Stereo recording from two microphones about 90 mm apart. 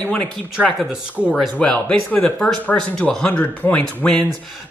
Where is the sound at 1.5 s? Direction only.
15° left (ahead or behind).